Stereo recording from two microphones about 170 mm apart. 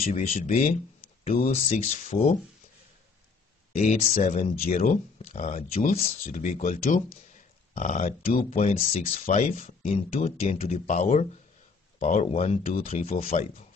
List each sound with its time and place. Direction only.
0.0 s speech: 50° left (ahead or behind)
1.2 s speech: 40° left (ahead or behind)
3.7 s speech: 40° left (ahead or behind)